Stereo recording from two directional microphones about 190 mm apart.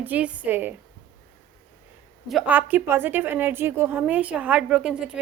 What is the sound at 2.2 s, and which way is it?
A woman's voice, 5° right (ahead or behind).